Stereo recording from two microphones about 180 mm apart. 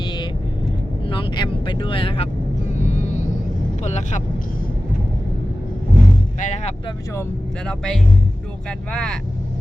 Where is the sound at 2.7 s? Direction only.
40° left (ahead or behind).